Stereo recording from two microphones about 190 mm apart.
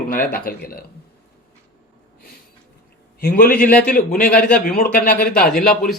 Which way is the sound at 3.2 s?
50° left (ahead or behind).